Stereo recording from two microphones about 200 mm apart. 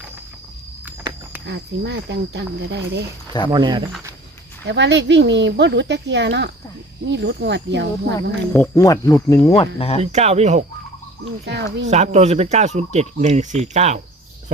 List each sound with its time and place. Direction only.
1.5 s speech: 60° right (ahead or behind)
3.5 s speech: 20° right (ahead or behind)
4.6 s speech: 60° right (ahead or behind)
8.1 s speech: 15° left (ahead or behind)
9.6 s speech: 30° left (ahead or behind)
10.0 s speech: 35° right (ahead or behind)
11.4 s speech: 60° right (ahead or behind)
11.9 s speech: 35° right (ahead or behind)